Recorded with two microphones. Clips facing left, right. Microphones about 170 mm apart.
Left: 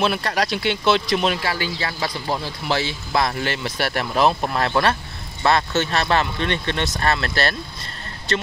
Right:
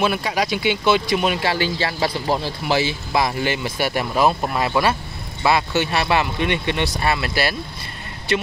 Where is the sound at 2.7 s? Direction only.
5° right (ahead or behind).